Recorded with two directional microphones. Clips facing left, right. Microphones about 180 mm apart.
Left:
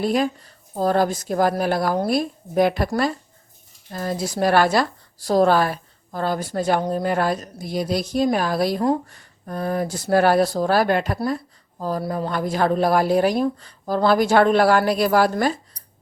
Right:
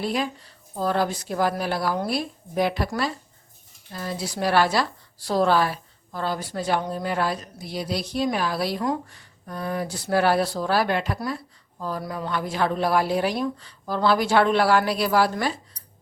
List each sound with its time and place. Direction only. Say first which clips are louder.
0.0 s speech: left 6 dB; 45° left (ahead or behind)